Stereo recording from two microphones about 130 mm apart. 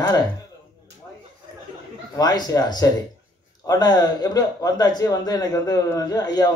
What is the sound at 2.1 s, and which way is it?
A man's voice, 30° left (ahead or behind).